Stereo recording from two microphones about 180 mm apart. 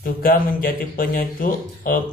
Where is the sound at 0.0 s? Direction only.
55° left (ahead or behind).